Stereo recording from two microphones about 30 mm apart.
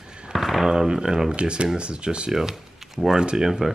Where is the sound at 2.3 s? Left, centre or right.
Centre.